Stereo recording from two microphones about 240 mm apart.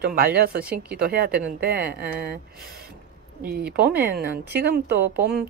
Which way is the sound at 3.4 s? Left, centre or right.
Right.